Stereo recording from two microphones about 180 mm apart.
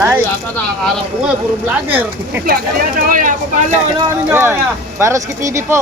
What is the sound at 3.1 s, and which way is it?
Speech, 50° right (ahead or behind).